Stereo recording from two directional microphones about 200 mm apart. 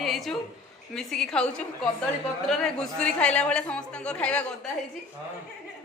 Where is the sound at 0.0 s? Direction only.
Centre (ahead or behind).